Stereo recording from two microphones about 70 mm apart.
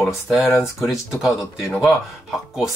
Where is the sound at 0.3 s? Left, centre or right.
Centre.